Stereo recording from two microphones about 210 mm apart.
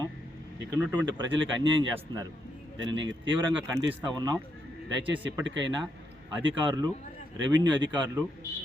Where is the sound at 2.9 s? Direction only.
60° right (ahead or behind).